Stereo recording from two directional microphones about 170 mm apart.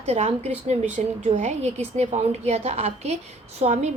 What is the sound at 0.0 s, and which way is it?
A woman's voice, 35° right (ahead or behind).